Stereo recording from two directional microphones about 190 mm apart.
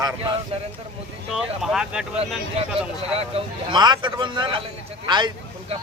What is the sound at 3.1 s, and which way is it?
A man's voice, 30° right (ahead or behind).